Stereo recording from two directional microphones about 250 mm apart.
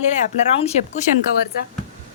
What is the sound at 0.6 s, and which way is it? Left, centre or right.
Speech, left.